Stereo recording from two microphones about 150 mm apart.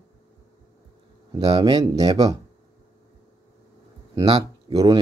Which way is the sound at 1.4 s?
30° right (ahead or behind).